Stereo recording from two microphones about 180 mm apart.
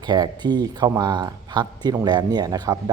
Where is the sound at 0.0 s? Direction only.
25° right (ahead or behind).